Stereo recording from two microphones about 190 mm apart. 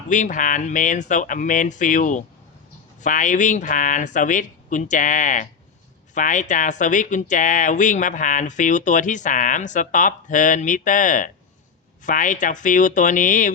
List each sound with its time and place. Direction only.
0.1 s speech: 40° left (ahead or behind)